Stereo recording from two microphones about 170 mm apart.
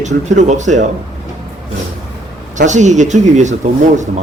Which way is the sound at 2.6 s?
45° right (ahead or behind).